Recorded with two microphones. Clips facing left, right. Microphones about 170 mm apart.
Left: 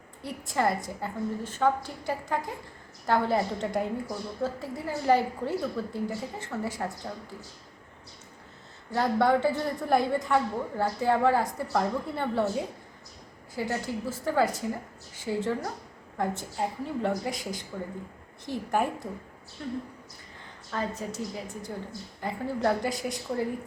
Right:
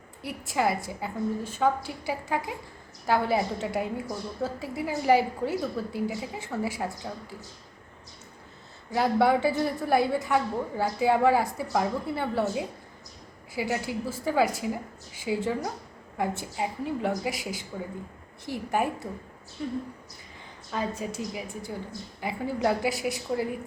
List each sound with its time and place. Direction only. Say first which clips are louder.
0.2 s a woman's voice: right 1 dB; 10° right (ahead or behind)
9.0 s a woman's voice: right 1 dB; 10° right (ahead or behind)
13.8 s a woman's voice: right 1 dB; 10° right (ahead or behind)